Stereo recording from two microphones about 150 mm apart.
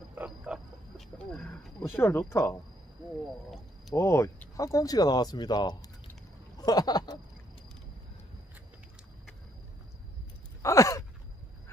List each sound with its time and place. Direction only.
0.1 s wild animals: 10° right (ahead or behind)
1.1 s a sound: 5° left (ahead or behind)
2.0 s speech: 15° left (ahead or behind)
3.9 s speech: 20° left (ahead or behind)
6.6 s a sound: 25° left (ahead or behind)
10.6 s gasp: 20° left (ahead or behind)